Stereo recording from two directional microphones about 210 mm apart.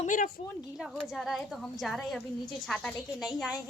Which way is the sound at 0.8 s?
5° right (ahead or behind).